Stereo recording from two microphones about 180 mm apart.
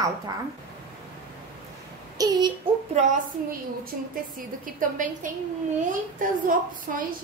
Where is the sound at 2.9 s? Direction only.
40° right (ahead or behind).